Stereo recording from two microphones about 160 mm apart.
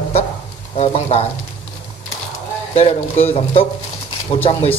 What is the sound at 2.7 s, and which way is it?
Speech, 40° left (ahead or behind).